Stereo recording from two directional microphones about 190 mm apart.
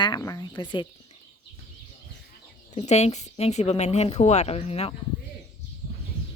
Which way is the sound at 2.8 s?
35° left (ahead or behind).